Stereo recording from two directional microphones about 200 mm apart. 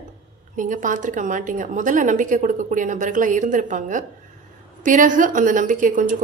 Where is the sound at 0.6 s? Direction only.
40° right (ahead or behind).